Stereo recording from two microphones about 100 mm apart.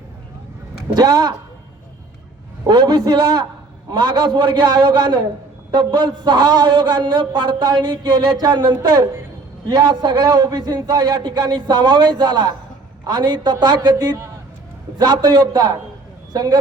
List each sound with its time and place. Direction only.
0.9 s a man's voice: 45° right (ahead or behind)
2.6 s a man's voice: 45° right (ahead or behind)